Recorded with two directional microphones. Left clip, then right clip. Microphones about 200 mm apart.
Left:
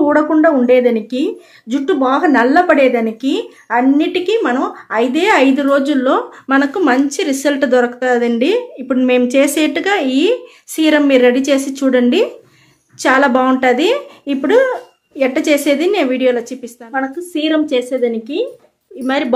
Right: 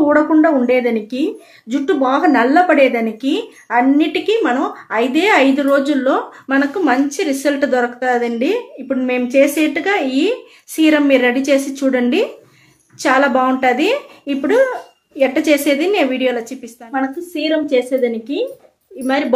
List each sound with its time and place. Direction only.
0.0 s speech: 20° left (ahead or behind)